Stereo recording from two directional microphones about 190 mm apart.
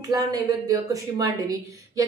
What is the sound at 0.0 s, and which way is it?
A woman's voice, 20° right (ahead or behind).